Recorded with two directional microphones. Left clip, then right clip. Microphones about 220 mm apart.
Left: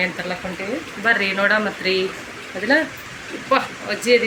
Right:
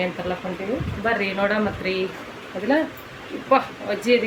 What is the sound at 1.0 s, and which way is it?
Speech, centre (ahead or behind).